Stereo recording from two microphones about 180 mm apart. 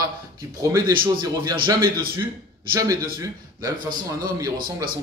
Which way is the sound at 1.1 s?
25° right (ahead or behind).